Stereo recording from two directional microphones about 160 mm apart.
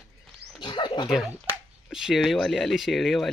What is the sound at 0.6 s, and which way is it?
Dog, 30° left (ahead or behind).